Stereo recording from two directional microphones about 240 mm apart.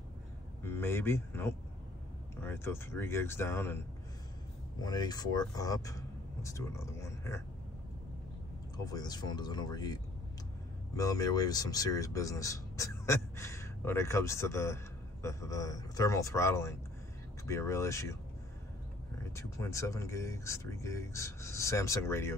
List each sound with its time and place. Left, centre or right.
0.7 s speech: centre
4.8 s speech: centre
8.7 s speech: centre
11.0 s speech: centre
19.3 s speech: centre